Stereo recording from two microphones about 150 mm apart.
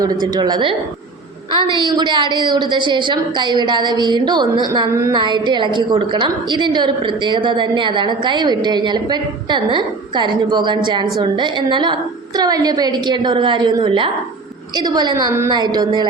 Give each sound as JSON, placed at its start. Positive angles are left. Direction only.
{"t": 0.0, "sound": "a woman's voice", "side_deg": -25}
{"t": 5.1, "sound": "a woman's voice", "side_deg": -30}